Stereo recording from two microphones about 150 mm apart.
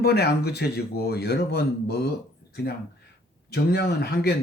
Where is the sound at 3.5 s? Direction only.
90° left.